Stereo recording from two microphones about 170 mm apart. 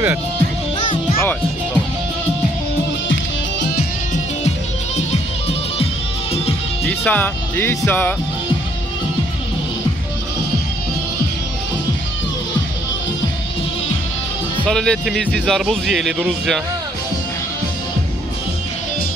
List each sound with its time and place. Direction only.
0.7 s music: 30° left (ahead or behind)
6.9 s speech: 10° left (ahead or behind)
14.7 s speech: 5° left (ahead or behind)